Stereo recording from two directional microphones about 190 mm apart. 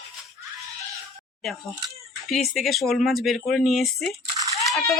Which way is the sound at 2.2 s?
Centre (ahead or behind).